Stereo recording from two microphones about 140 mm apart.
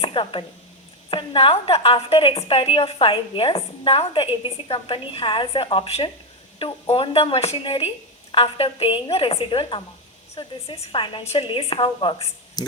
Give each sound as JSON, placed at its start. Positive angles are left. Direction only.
{"t": 0.0, "sound": "speech", "side_deg": 35}